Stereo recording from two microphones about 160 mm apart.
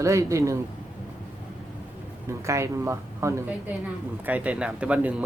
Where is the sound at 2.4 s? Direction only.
20° right (ahead or behind).